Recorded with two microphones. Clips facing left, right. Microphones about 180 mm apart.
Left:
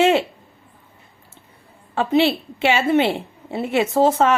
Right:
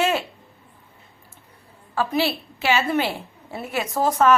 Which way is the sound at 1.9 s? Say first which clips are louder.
Left 5 dB; 25° left (ahead or behind).